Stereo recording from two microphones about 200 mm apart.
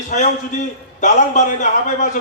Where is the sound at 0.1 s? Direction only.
40° left (ahead or behind).